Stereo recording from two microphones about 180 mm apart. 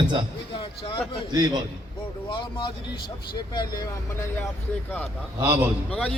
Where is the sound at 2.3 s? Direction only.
25° left (ahead or behind).